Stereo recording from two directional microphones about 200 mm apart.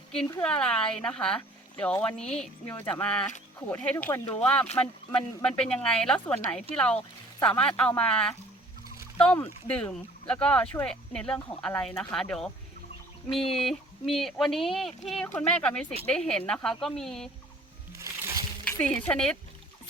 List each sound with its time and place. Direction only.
0.4 s speech: 5° left (ahead or behind)
13.5 s speech: centre (ahead or behind)
17.9 s music: 15° right (ahead or behind)
18.6 s speech: 5° left (ahead or behind)